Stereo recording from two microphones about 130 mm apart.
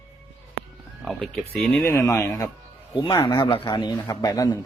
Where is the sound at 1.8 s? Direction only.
20° left (ahead or behind).